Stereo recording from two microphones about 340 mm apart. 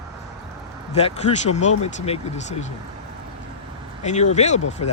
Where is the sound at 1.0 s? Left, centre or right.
Centre.